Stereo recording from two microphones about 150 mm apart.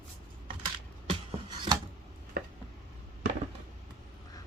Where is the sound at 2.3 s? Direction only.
90° right.